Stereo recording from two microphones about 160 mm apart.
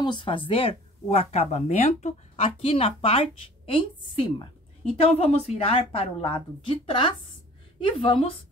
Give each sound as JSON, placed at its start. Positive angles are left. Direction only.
{"t": 0.0, "sound": "speech", "side_deg": 30}